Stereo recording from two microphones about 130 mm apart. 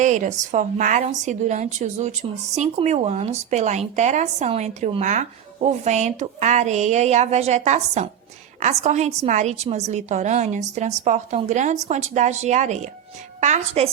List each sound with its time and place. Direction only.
0.0 s a woman's voice: 70° right (ahead or behind)
1.0 s a woman's voice: 65° right (ahead or behind)